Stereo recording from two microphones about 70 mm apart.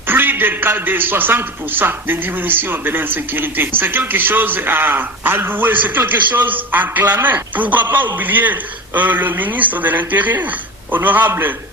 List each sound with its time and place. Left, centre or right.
0.1 s a man's voice: right